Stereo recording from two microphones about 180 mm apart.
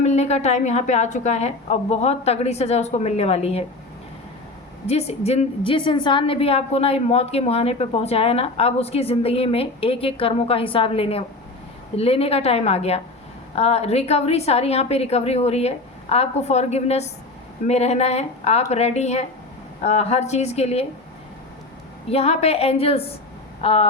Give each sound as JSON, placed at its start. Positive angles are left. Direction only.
{"t": 0.0, "sound": "a woman's voice", "side_deg": 40}
{"t": 4.9, "sound": "a woman's voice", "side_deg": 35}
{"t": 22.1, "sound": "a woman's voice", "side_deg": 35}